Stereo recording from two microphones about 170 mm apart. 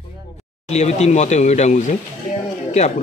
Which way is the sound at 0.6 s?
40° left (ahead or behind).